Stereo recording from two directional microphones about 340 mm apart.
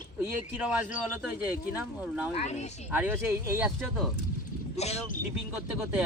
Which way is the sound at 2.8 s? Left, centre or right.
Centre.